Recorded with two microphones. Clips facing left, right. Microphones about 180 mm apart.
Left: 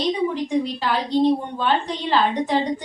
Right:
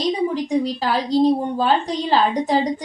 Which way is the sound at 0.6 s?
40° right (ahead or behind).